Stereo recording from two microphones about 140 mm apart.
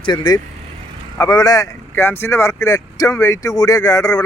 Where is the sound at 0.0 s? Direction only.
30° left (ahead or behind).